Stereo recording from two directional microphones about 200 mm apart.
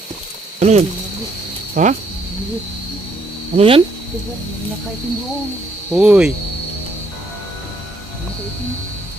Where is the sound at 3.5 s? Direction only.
25° right (ahead or behind).